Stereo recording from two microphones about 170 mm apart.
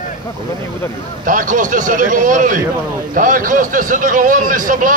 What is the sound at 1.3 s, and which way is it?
A man's voice, 50° right (ahead or behind).